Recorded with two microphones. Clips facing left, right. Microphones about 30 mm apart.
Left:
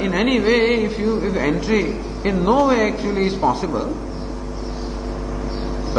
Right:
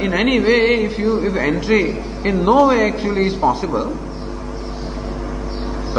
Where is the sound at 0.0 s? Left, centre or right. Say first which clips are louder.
Right 2 dB; centre.